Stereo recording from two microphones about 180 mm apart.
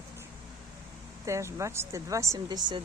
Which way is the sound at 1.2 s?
15° right (ahead or behind).